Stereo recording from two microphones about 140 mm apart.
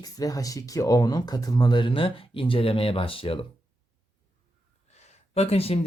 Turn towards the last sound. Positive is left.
turn(degrees=45)  # may be behind; listen again after turning